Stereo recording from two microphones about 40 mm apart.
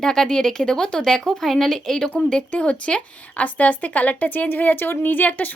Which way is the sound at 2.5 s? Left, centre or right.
Left.